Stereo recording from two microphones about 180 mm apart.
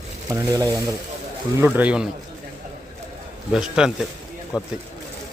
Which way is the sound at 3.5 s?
5° right (ahead or behind).